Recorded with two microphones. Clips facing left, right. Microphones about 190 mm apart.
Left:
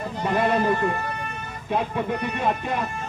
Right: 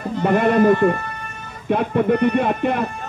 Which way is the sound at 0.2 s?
60° right (ahead or behind).